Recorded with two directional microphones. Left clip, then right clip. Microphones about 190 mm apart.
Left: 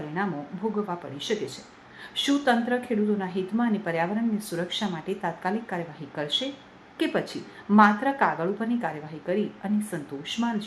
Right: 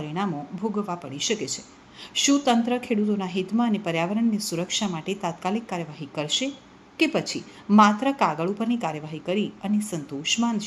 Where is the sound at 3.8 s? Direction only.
35° right (ahead or behind).